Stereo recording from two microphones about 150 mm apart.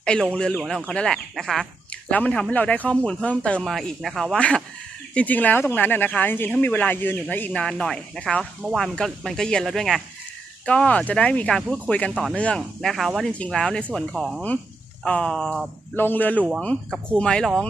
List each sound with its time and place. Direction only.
0.0 s speech: 5° left (ahead or behind)
16.0 s speech: 10° left (ahead or behind)
16.4 s speech: 5° right (ahead or behind)
17.2 s speech: 5° left (ahead or behind)